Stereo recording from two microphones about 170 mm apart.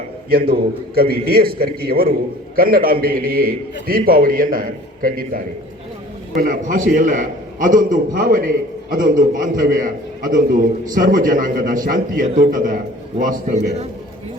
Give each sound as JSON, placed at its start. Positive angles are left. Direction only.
{"t": 0.3, "sound": "a man's voice", "side_deg": -60}